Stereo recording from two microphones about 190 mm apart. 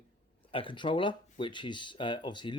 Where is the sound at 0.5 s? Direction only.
25° left (ahead or behind).